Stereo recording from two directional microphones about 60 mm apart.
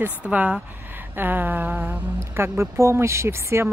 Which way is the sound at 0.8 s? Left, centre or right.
Right.